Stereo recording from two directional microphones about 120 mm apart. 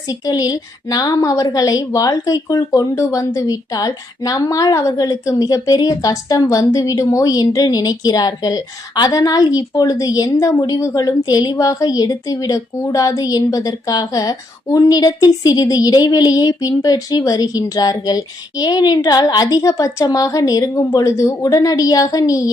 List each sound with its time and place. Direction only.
0.1 s a woman's voice: 30° left (ahead or behind)